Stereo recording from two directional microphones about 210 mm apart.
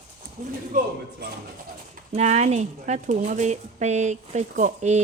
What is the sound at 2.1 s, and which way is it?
Speech, 35° right (ahead or behind).